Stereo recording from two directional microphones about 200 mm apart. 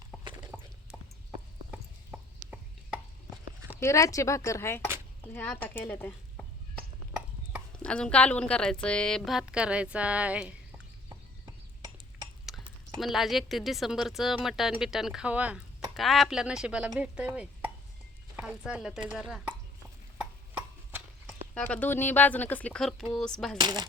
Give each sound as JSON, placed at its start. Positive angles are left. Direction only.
{"t": 0.1, "sound": "clip-clop", "side_deg": -5}
{"t": 1.7, "sound": "a sound", "side_deg": -5}
{"t": 3.8, "sound": "speech", "side_deg": 15}
{"t": 7.8, "sound": "a woman's voice", "side_deg": 5}
{"t": 12.5, "sound": "a sound", "side_deg": 0}
{"t": 13.0, "sound": "a woman's voice", "side_deg": 0}
{"t": 20.1, "sound": "a sound", "side_deg": -10}
{"t": 21.5, "sound": "a woman's voice", "side_deg": 5}
{"t": 23.6, "sound": "speech", "side_deg": -20}